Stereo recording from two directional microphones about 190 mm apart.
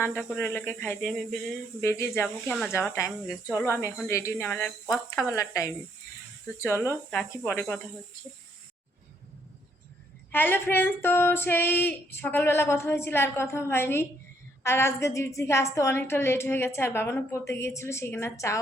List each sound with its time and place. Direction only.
0.0 s a woman's voice: 10° left (ahead or behind)
1.8 s a woman's voice: 15° left (ahead or behind)
5.3 s a woman's voice: 15° left (ahead or behind)
7.1 s a woman's voice: 10° left (ahead or behind)
10.3 s a woman's voice: 10° left (ahead or behind)